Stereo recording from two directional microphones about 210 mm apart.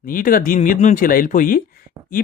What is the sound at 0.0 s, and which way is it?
Speech, 40° left (ahead or behind).